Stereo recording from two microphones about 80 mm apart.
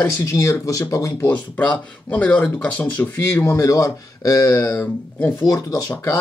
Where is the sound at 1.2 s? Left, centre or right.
Centre.